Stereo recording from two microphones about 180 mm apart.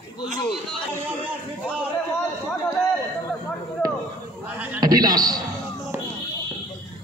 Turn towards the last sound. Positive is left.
turn(degrees=-20)  # may be behind; listen again after turning